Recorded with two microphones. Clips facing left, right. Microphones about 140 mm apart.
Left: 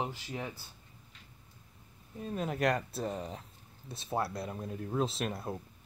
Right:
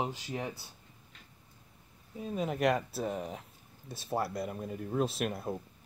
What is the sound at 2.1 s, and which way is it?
Speech, centre (ahead or behind).